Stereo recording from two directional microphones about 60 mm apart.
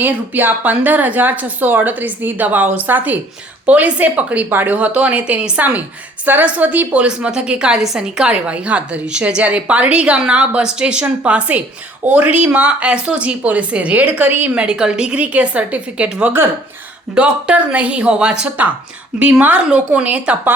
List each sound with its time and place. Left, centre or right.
0.0 s a woman's voice: right
4.4 s a woman's voice: right; by 8.3 s centre
8.3 s a woman's voice: right
14.6 s a woman's voice: centre